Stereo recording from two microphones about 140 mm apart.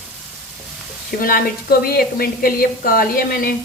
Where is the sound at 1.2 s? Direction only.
90° left.